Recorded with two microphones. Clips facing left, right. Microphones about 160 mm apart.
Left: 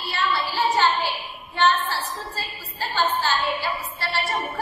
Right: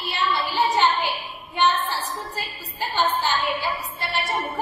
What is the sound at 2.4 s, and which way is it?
A woman's voice, 20° right (ahead or behind).